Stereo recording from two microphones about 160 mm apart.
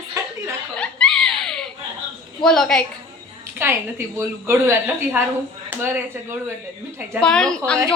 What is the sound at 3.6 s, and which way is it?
A woman's voice, 15° right (ahead or behind).